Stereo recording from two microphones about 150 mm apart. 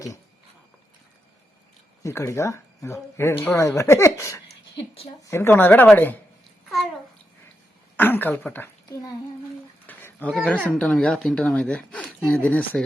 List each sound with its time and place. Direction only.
2.0 s speech: 20° left (ahead or behind)
6.7 s babbling: centre (ahead or behind)
7.9 s speech: 15° left (ahead or behind)
9.8 s a sound: 10° left (ahead or behind)
10.3 s speech: 5° left (ahead or behind)